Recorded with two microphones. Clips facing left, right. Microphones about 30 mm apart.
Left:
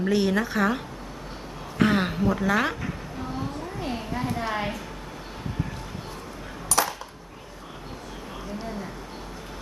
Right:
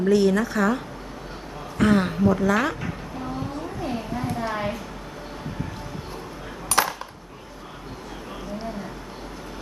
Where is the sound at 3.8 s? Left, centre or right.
Centre.